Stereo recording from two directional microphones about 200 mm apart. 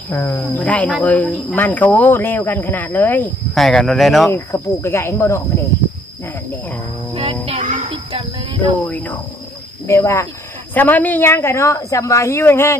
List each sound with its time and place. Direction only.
0.1 s speech: 10° left (ahead or behind)
4.3 s speech: 10° left (ahead or behind)
7.9 s a sound: 25° right (ahead or behind)
8.8 s speech: 10° left (ahead or behind)